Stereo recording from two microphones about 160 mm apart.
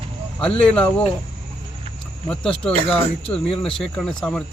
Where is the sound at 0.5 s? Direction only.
5° left (ahead or behind).